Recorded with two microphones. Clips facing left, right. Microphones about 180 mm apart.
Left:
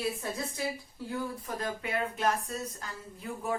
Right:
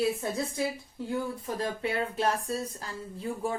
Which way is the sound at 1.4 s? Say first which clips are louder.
Right 4 dB; 30° right (ahead or behind).